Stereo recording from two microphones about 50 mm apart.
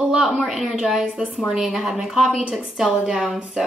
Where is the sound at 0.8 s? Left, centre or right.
Centre.